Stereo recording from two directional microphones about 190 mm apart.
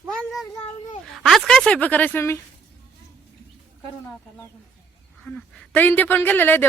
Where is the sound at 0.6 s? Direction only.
30° left (ahead or behind).